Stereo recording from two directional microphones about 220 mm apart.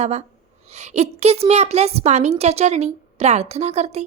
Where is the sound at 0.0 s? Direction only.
30° right (ahead or behind).